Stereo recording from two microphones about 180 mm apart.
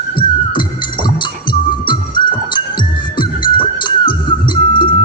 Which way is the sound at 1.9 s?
25° left (ahead or behind).